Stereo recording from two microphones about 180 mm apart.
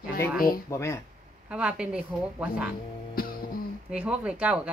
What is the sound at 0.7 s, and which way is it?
Speech, 15° left (ahead or behind).